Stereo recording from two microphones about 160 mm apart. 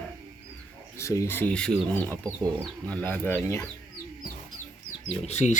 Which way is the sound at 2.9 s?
10° left (ahead or behind).